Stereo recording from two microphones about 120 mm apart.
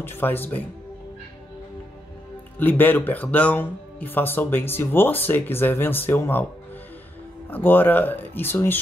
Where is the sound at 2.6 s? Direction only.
15° left (ahead or behind).